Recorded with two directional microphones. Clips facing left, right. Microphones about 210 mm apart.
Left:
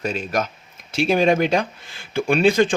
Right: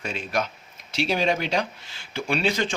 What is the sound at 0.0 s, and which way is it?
Speech, 40° left (ahead or behind).